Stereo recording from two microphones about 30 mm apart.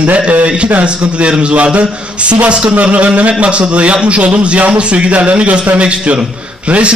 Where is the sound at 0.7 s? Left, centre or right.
Right.